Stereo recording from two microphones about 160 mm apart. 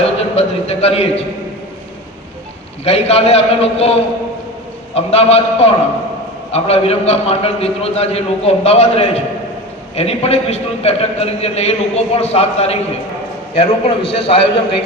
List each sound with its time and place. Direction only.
0.0 s a man's voice: 40° left (ahead or behind)
2.8 s a man's voice: 40° left (ahead or behind)
14.1 s a man's voice: 35° left (ahead or behind)